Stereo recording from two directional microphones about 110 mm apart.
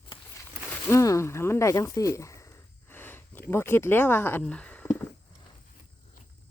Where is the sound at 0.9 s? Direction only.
25° left (ahead or behind).